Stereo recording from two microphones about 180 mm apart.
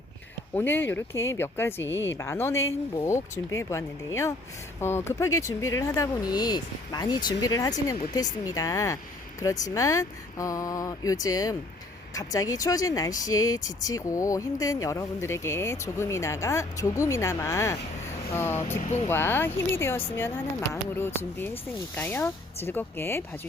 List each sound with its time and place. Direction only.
0.5 s speech: 10° left (ahead or behind)